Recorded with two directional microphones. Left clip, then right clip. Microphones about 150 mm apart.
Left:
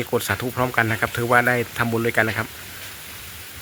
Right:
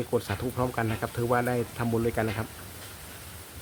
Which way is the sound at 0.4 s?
20° left (ahead or behind).